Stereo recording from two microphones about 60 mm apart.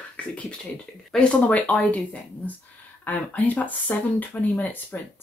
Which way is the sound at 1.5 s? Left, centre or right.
Left.